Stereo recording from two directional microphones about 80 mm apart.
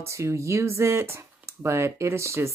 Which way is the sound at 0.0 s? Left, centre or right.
Right.